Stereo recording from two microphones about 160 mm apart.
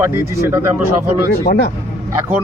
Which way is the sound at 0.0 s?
15° right (ahead or behind).